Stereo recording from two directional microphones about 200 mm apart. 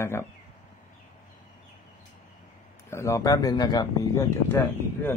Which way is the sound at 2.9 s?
15° left (ahead or behind).